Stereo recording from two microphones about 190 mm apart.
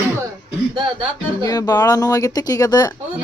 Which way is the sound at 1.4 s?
20° left (ahead or behind).